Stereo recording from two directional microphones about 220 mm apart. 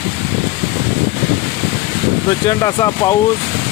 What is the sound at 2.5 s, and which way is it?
Speech, 15° left (ahead or behind).